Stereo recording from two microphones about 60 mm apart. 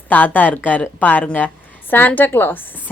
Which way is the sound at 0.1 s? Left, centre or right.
Left.